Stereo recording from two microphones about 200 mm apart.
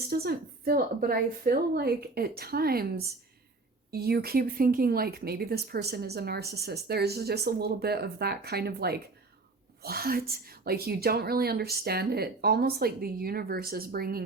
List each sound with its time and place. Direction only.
0.1 s speech: 50° right (ahead or behind)
3.9 s speech: 50° right (ahead or behind)